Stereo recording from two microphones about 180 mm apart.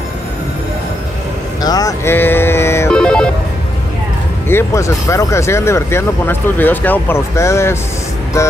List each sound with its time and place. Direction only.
1.6 s music: 20° left (ahead or behind)
2.9 s telephone bell ringing: 5° left (ahead or behind)
4.5 s speech: 15° left (ahead or behind)